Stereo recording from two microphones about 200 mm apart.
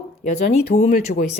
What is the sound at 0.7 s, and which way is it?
Speech, 35° left (ahead or behind).